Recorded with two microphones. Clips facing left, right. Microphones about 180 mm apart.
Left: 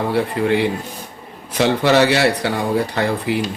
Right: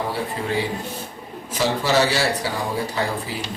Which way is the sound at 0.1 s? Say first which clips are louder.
Left 7 dB; 65° left (ahead or behind).